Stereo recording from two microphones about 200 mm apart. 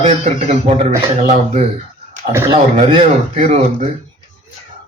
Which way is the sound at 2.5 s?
25° right (ahead or behind).